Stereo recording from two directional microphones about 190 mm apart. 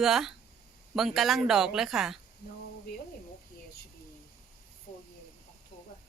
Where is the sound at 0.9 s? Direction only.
Centre (ahead or behind).